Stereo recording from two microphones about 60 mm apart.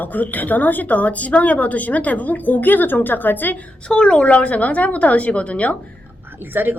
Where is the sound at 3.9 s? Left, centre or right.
Centre.